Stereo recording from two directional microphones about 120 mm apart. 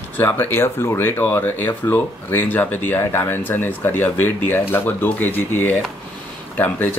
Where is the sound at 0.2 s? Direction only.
20° left (ahead or behind).